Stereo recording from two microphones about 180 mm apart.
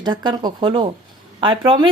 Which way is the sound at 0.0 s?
25° right (ahead or behind).